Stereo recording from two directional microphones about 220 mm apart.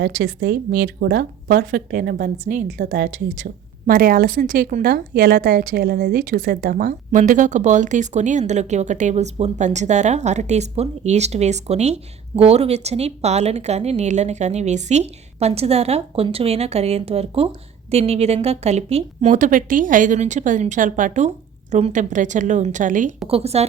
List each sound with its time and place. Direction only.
0.0 s speech: 55° right (ahead or behind); by 2.6 s 35° right (ahead or behind)
2.7 s a woman's voice: 45° right (ahead or behind); by 23.6 s 30° right (ahead or behind)